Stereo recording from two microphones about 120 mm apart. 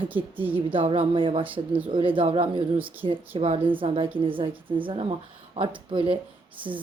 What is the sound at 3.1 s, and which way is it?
Speech, 50° right (ahead or behind).